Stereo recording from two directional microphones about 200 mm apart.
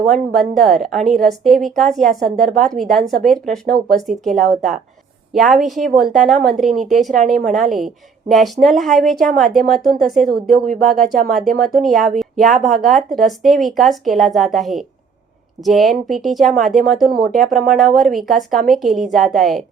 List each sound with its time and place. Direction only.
0.1 s a woman's voice: centre (ahead or behind)
10.7 s speech: 45° right (ahead or behind)
11.3 s a woman's voice: centre (ahead or behind)
17.1 s speech: 50° right (ahead or behind)
17.7 s a woman's voice: centre (ahead or behind)